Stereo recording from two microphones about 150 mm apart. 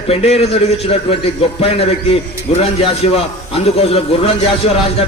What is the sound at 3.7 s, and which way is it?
A man's voice, 40° left (ahead or behind).